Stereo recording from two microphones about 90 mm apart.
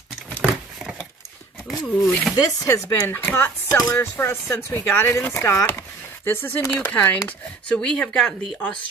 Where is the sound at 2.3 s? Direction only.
40° left (ahead or behind).